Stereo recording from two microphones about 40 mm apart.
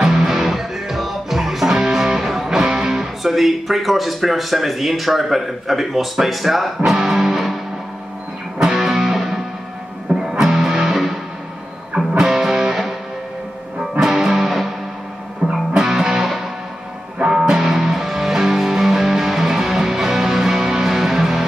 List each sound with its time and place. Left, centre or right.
0.0 s music: centre
1.9 s speech: centre
6.9 s music: centre
12.2 s music: centre
13.9 s music: centre
17.3 s music: centre